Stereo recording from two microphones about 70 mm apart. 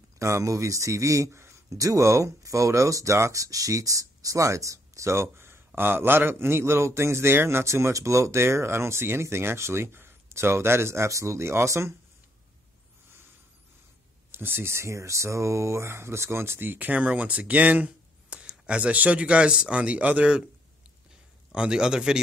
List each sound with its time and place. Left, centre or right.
0.2 s a man's voice: right
14.3 s speech: right
21.5 s a man's voice: centre